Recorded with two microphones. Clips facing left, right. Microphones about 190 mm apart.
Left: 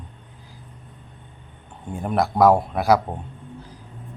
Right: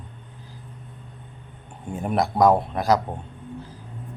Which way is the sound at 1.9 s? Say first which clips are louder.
Left 1 dB; 5° right (ahead or behind).